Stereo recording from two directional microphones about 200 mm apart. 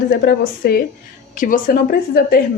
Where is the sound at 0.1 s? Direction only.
50° left (ahead or behind).